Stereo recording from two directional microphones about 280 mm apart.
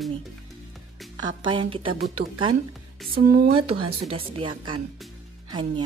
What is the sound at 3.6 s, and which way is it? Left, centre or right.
A woman's voice, centre.